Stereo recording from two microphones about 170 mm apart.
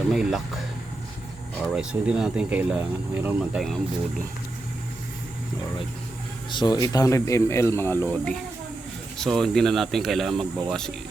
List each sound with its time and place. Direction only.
0.1 s speech: centre (ahead or behind)
1.6 s speech: 5° right (ahead or behind)
6.5 s speech: 25° left (ahead or behind); by 10.9 s 5° left (ahead or behind)